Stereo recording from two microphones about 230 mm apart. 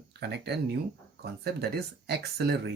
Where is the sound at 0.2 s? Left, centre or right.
Right.